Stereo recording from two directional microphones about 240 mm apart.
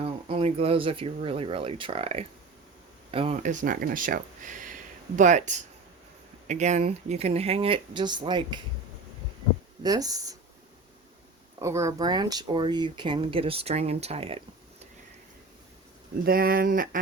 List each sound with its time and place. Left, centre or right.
0.0 s speech: right
9.8 s speech: centre
11.6 s speech: centre
16.2 s speech: right